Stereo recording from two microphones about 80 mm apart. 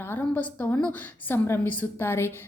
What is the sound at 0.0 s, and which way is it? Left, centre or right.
A woman's voice, left.